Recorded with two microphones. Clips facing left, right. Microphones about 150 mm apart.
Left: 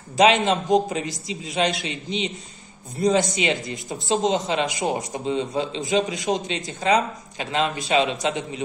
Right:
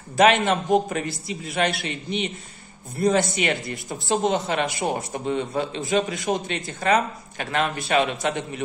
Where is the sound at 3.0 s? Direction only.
15° left (ahead or behind).